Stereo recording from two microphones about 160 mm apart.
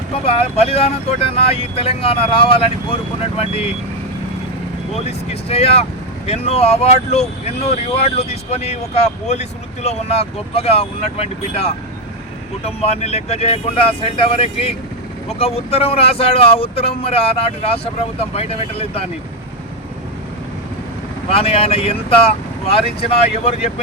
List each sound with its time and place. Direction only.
0.3 s speech: 40° left (ahead or behind)
4.9 s speech: 40° left (ahead or behind)
21.2 s speech: 35° left (ahead or behind)